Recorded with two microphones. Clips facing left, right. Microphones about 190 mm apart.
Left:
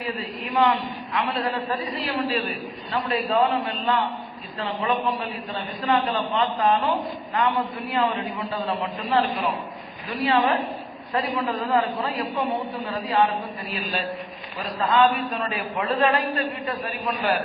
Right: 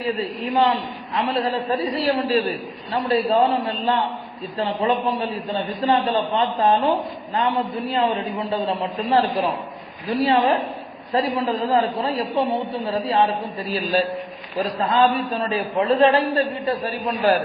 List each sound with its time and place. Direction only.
0.0 s a man's voice: 30° right (ahead or behind)
4.5 s a man's voice: 25° right (ahead or behind)
14.6 s a man's voice: 25° right (ahead or behind)